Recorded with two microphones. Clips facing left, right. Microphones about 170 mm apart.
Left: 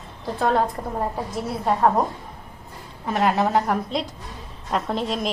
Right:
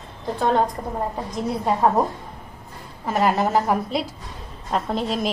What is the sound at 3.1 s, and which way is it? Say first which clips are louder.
A woman's voice: right 1 dB; centre (ahead or behind).